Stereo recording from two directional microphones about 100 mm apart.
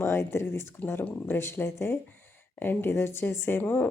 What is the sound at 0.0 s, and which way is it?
Speech, 25° left (ahead or behind).